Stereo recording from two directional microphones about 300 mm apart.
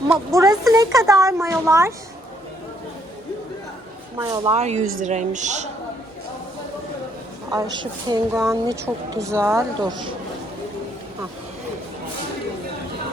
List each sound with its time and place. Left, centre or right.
0.3 s a woman's voice: centre
4.2 s speech: centre
4.8 s speech: right
5.0 s speech: right
7.5 s a woman's voice: centre